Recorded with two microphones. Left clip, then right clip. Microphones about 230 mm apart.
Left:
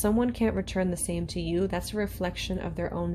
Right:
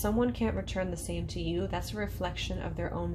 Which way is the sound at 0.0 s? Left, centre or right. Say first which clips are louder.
Left 3 dB; left.